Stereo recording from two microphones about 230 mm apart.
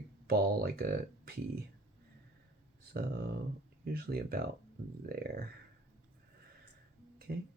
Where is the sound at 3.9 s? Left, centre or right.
Right.